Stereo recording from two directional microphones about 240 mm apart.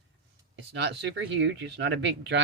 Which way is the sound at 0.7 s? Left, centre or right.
Right.